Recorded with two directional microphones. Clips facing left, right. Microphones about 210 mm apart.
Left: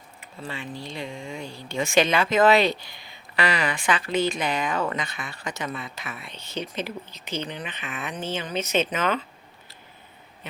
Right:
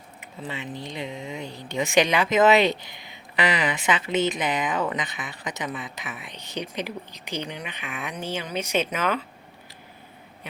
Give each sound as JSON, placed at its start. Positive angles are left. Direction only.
{"t": 0.2, "sound": "speech", "side_deg": -20}
{"t": 10.4, "sound": "speech", "side_deg": -10}